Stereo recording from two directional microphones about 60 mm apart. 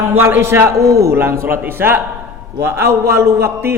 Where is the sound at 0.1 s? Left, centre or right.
Right.